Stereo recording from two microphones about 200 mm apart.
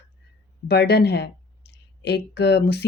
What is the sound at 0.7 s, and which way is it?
Speech, 55° left (ahead or behind).